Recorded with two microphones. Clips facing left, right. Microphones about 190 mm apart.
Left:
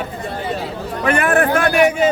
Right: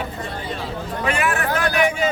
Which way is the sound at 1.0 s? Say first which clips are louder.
Left 7 dB; 55° left (ahead or behind).